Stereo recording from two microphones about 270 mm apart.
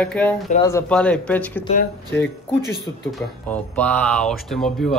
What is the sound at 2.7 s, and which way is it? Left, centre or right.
Speech, centre.